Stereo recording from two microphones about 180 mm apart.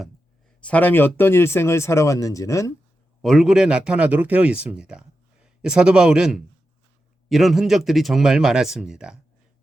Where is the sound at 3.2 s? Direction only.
Centre (ahead or behind).